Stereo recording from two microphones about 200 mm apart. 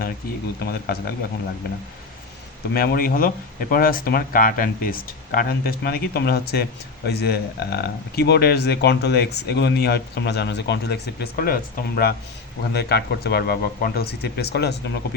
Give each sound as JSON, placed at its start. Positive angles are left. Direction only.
{"t": 0.6, "sound": "speech", "side_deg": 50}
{"t": 2.7, "sound": "speech", "side_deg": 50}